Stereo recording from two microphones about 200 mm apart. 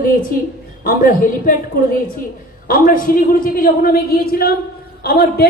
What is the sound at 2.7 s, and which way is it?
A woman's voice, 45° left (ahead or behind).